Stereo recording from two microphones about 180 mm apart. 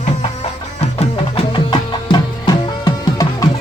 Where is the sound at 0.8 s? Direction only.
30° left (ahead or behind).